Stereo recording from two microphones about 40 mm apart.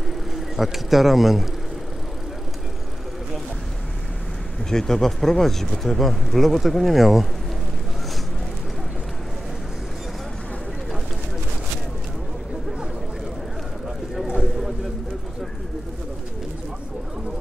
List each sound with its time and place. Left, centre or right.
0.6 s speech: centre
4.6 s speech: centre
14.2 s a sound: right